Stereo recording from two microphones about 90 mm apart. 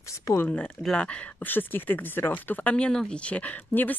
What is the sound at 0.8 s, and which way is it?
Speech, 10° left (ahead or behind).